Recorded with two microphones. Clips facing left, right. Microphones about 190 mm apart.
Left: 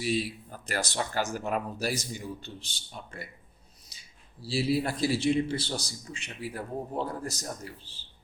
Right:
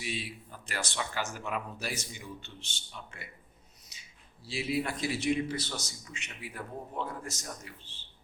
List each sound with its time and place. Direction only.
0.0 s a man's voice: 40° left (ahead or behind)
4.4 s a man's voice: 35° left (ahead or behind)